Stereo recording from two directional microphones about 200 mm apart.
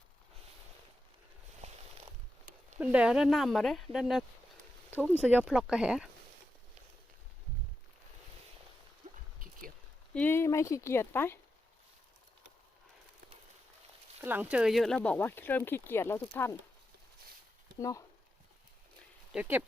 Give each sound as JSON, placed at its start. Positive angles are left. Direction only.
{"t": 1.6, "sound": "a sound", "side_deg": -30}
{"t": 2.7, "sound": "speech", "side_deg": -5}
{"t": 9.0, "sound": "a sound", "side_deg": -40}
{"t": 10.2, "sound": "speech", "side_deg": 10}
{"t": 14.2, "sound": "speech", "side_deg": -10}
{"t": 17.7, "sound": "speech", "side_deg": 15}
{"t": 19.3, "sound": "speech", "side_deg": -10}